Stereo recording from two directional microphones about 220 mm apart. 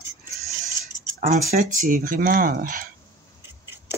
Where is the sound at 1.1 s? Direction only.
35° right (ahead or behind).